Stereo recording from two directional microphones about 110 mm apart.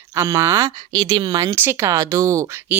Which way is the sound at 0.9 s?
50° right (ahead or behind).